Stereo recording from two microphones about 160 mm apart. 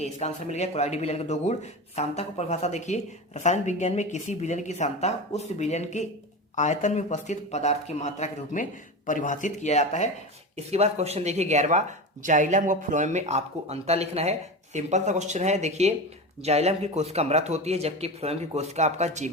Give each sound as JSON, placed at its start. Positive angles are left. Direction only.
{"t": 0.0, "sound": "a man's voice", "side_deg": 45}
{"t": 10.6, "sound": "speech", "side_deg": -40}